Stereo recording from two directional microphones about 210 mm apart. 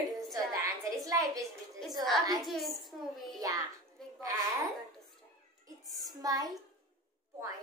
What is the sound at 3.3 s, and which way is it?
A child's voice, 15° right (ahead or behind).